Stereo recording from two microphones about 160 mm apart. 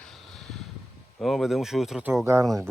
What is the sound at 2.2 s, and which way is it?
Speech, 20° right (ahead or behind).